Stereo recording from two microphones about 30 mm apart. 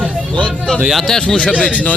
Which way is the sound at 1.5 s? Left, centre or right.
Left.